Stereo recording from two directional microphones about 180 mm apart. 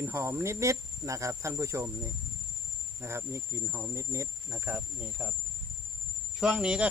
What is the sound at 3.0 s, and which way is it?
Speech, 15° right (ahead or behind).